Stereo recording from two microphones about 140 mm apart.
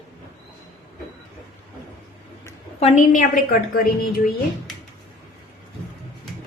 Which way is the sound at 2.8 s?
65° left (ahead or behind).